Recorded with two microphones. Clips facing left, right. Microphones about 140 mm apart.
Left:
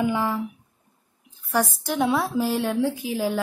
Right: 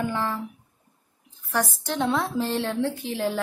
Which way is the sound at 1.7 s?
10° left (ahead or behind).